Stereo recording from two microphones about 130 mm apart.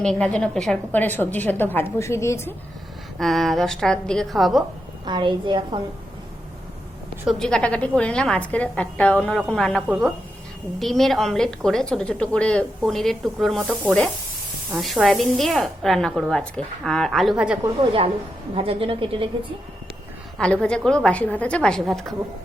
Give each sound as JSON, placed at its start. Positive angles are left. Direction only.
{"t": 0.0, "sound": "a woman's voice", "side_deg": 5}
{"t": 3.2, "sound": "a woman's voice", "side_deg": 0}
{"t": 5.0, "sound": "a woman's voice", "side_deg": -35}
{"t": 7.3, "sound": "a woman's voice", "side_deg": 5}
{"t": 14.8, "sound": "a woman's voice", "side_deg": 0}
{"t": 18.5, "sound": "a woman's voice", "side_deg": -45}
{"t": 20.4, "sound": "a woman's voice", "side_deg": 5}